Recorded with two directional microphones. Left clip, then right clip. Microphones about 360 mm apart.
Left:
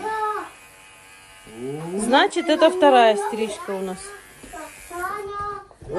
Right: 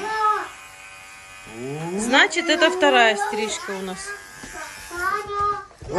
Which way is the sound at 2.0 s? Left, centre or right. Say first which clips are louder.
Even; centre.